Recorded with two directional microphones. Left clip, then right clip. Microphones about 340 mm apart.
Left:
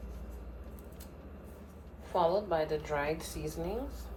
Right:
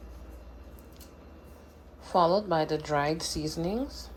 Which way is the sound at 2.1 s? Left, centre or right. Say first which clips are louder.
Right 5 dB; centre.